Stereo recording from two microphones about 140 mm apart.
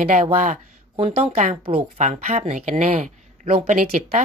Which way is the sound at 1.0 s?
50° right (ahead or behind).